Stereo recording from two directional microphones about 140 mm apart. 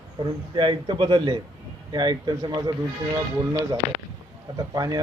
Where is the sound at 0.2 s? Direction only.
35° right (ahead or behind).